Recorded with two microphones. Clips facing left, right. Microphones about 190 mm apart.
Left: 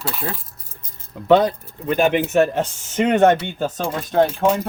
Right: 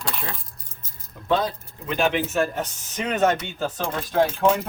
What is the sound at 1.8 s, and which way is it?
Speech, 50° left (ahead or behind).